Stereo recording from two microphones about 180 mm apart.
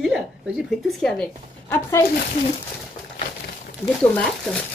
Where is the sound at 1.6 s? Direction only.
15° left (ahead or behind).